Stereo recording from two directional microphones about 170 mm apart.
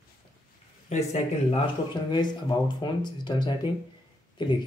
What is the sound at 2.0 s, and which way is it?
Speech, 25° left (ahead or behind).